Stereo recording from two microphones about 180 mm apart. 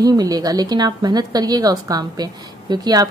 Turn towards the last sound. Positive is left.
turn(degrees=-20)  # may be behind; listen again after turning